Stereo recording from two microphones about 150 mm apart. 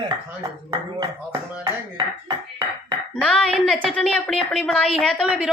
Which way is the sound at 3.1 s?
Centre (ahead or behind).